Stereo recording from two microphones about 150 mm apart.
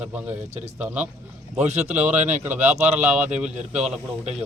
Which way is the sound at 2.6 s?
45° right (ahead or behind).